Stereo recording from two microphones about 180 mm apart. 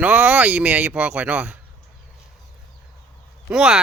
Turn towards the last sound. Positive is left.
turn(degrees=-5)  # may be behind; listen again after turning